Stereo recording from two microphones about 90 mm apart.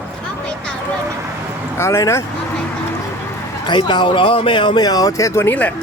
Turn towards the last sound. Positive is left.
turn(degrees=20)  # may be behind; listen again after turning